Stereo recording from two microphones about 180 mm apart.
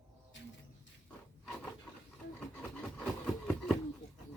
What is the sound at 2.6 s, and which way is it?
Wood, 5° left (ahead or behind).